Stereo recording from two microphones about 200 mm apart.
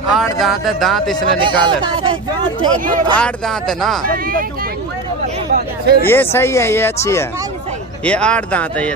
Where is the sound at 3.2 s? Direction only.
Centre (ahead or behind).